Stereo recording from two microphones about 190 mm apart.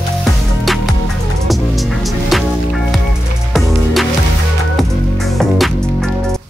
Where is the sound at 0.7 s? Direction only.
Centre (ahead or behind).